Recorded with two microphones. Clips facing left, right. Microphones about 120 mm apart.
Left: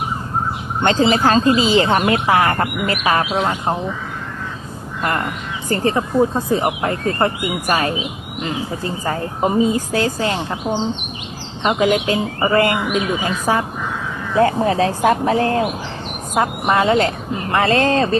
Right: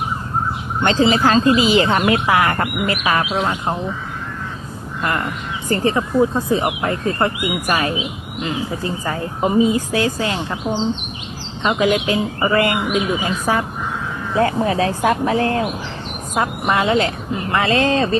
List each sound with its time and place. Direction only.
0.8 s speech: 30° left (ahead or behind)
5.7 s speech: 35° left (ahead or behind)